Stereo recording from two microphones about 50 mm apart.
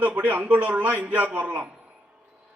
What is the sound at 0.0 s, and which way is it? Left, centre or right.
A man's voice, right.